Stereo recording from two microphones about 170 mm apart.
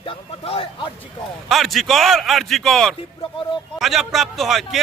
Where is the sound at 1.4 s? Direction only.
Centre (ahead or behind).